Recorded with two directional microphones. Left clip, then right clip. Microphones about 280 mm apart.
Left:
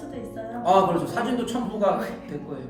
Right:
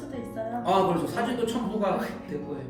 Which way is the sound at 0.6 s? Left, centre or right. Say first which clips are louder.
Left 5 dB; centre.